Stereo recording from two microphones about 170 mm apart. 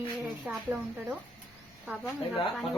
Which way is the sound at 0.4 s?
10° right (ahead or behind).